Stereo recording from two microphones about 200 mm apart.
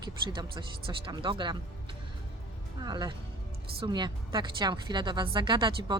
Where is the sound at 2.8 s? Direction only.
20° right (ahead or behind).